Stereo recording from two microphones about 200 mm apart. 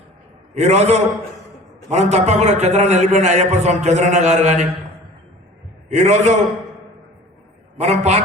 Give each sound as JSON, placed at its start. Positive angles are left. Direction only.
{"t": 0.5, "sound": "a man's voice", "side_deg": -35}
{"t": 5.9, "sound": "a man's voice", "side_deg": -35}
{"t": 7.8, "sound": "a man's voice", "side_deg": -35}